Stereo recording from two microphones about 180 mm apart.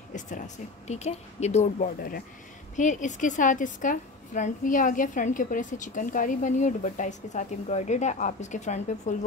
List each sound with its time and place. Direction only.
0.8 s a woman's voice: 40° left (ahead or behind)